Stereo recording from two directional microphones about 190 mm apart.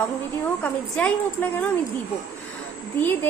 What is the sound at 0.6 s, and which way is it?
A woman's voice, 10° left (ahead or behind).